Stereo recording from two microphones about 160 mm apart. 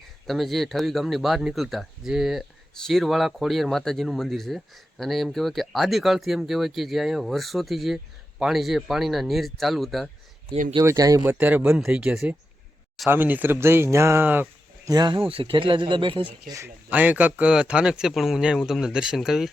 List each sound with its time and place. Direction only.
0.3 s speech: centre (ahead or behind)
10.8 s speech: 25° right (ahead or behind)
11.3 s speech: 10° right (ahead or behind)
14.8 s speech: 25° right (ahead or behind)
16.5 s speech: 15° right (ahead or behind)